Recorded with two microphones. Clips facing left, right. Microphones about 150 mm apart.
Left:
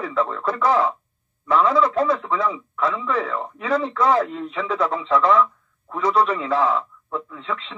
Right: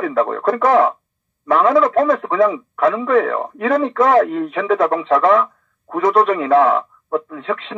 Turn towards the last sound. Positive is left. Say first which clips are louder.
# right 7 dB
turn(degrees=-55)  # may be behind; listen again after turning